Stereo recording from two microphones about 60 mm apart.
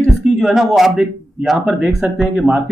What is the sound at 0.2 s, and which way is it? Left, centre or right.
Speech, centre.